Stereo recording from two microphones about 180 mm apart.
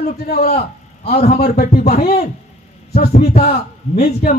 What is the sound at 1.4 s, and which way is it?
Speech, 55° left (ahead or behind).